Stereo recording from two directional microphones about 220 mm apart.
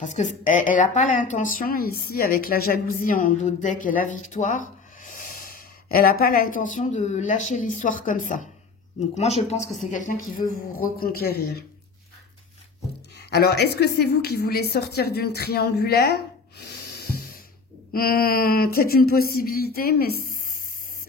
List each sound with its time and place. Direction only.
0.0 s speech: 35° left (ahead or behind)
13.2 s a woman's voice: 45° left (ahead or behind)